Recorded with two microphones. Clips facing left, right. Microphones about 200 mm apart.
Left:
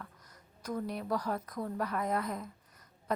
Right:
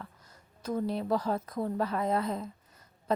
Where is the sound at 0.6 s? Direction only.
25° right (ahead or behind).